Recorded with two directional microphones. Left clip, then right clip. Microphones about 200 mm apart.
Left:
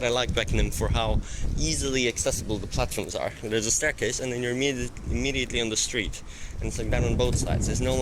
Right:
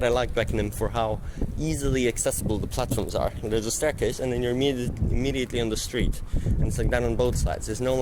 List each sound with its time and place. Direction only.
0.0 s speech: 10° right (ahead or behind)